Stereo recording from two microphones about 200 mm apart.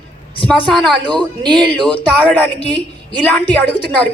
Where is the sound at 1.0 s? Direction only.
20° right (ahead or behind).